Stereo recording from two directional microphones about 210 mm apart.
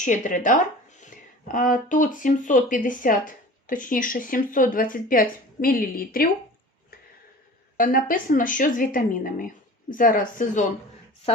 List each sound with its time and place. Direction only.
0.0 s speech: 35° left (ahead or behind)
7.8 s speech: 40° left (ahead or behind)